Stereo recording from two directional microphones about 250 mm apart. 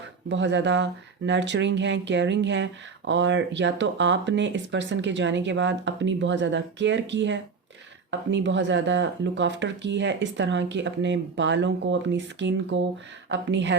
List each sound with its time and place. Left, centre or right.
0.3 s speech: right